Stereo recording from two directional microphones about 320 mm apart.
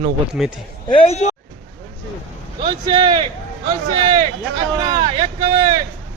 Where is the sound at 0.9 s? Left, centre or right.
Centre.